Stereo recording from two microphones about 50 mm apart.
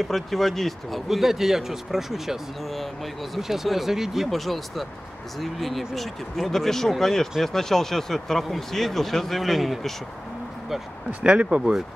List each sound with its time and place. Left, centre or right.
0.0 s speech: centre
11.1 s speech: right